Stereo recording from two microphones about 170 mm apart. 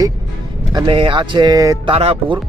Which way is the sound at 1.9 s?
35° right (ahead or behind).